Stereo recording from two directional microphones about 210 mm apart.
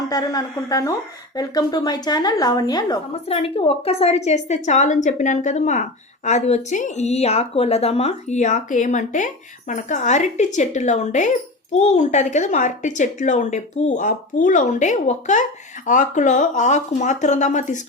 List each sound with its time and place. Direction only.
0.1 s a woman's voice: 15° left (ahead or behind); by 17.7 s 35° left (ahead or behind)